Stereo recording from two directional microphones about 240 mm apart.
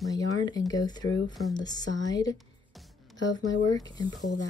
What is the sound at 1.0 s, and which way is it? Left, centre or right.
Speech, left.